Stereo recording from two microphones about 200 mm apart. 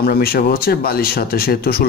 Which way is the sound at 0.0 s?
50° left (ahead or behind).